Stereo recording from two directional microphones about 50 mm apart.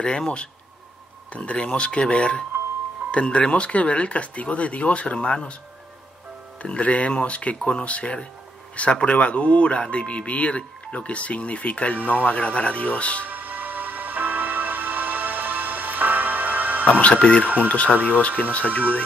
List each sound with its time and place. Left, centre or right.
0.0 s speech: centre
6.6 s speech: left
13.3 s music: right
17.0 s speech: left